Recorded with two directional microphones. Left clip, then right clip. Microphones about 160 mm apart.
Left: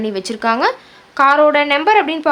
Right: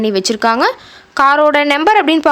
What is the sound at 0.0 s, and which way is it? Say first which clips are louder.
A woman's voice: right 5 dB; 40° right (ahead or behind).